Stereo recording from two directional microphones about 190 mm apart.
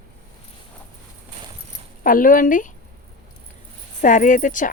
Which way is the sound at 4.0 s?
40° left (ahead or behind).